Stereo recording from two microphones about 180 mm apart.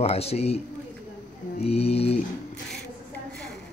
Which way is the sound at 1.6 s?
35° left (ahead or behind).